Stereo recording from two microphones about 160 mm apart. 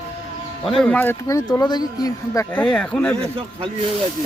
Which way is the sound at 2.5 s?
5° left (ahead or behind).